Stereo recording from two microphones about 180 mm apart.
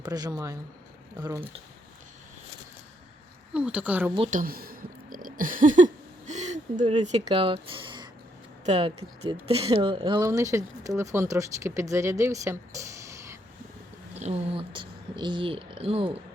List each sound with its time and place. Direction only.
0.0 s speech: 20° right (ahead or behind)
3.5 s speech: 5° right (ahead or behind)
4.3 s a sound: 50° right (ahead or behind)
6.9 s speech: 40° right (ahead or behind)
7.3 s speech: 30° right (ahead or behind)
14.2 s speech: 35° right (ahead or behind)